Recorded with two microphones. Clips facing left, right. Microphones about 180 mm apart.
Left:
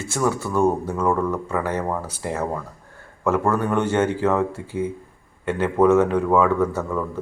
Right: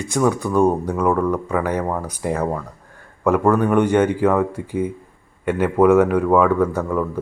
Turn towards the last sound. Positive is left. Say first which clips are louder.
# right 3 dB
turn(degrees=-10)  # may be behind; listen again after turning